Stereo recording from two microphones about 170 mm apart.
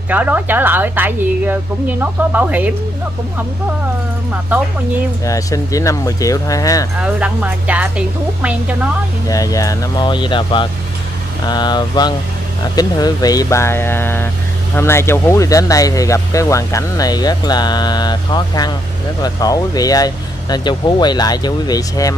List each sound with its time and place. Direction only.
0.1 s a woman's voice: 10° right (ahead or behind)
5.2 s speech: 20° left (ahead or behind)
7.0 s a woman's voice: 5° right (ahead or behind)
9.3 s speech: 20° left (ahead or behind)